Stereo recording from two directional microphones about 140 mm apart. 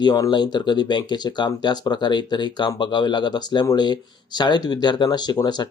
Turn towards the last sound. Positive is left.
turn(degrees=30)  # may be behind; listen again after turning